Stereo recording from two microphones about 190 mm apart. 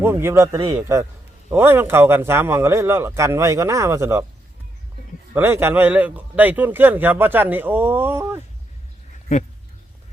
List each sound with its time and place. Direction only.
0.0 s speech: 10° right (ahead or behind)
5.3 s speech: 10° right (ahead or behind)